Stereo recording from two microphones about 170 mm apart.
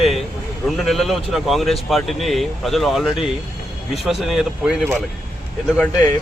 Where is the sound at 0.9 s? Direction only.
Centre (ahead or behind).